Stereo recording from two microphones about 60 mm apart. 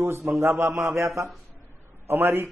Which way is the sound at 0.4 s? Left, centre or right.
Right.